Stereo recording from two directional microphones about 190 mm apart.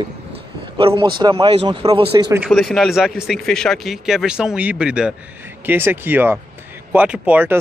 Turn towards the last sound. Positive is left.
turn(degrees=-10)  # may be behind; listen again after turning